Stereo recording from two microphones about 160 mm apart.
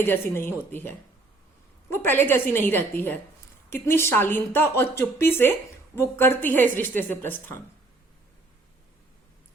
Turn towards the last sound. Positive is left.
turn(degrees=10)  # may be behind; listen again after turning